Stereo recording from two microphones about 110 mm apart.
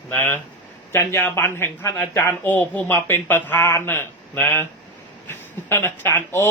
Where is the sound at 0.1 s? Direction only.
20° left (ahead or behind).